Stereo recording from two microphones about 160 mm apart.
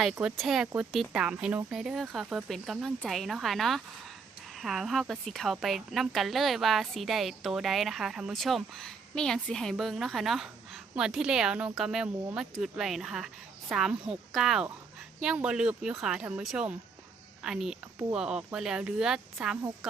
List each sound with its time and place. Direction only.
0.0 s a woman's voice: 5° right (ahead or behind)